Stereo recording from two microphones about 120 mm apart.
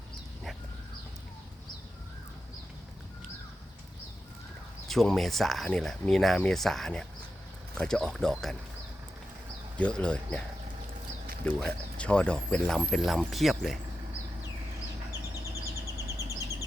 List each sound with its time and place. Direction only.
4.9 s speech: centre (ahead or behind)
9.7 s speech: 10° left (ahead or behind)
11.4 s speech: 10° left (ahead or behind)
16.1 s a sound: 25° right (ahead or behind)